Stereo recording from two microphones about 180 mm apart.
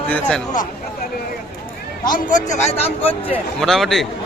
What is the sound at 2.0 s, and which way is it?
A man's voice, 45° left (ahead or behind).